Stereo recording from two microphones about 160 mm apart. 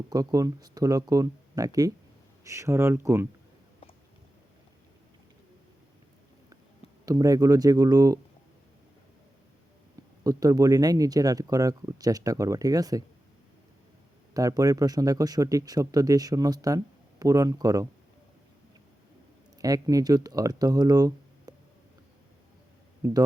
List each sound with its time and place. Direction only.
0.1 s speech: 20° right (ahead or behind)
7.0 s speech: 20° right (ahead or behind)
10.2 s speech: 20° right (ahead or behind)
14.3 s speech: 20° right (ahead or behind)
19.5 s speech: 20° right (ahead or behind)
23.0 s speech: 20° right (ahead or behind)